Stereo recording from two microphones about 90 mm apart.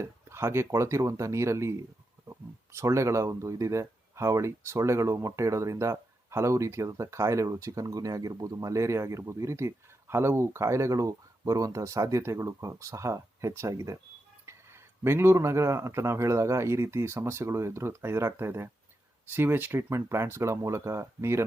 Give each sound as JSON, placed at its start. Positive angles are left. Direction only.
{"t": 0.0, "sound": "speech", "side_deg": -30}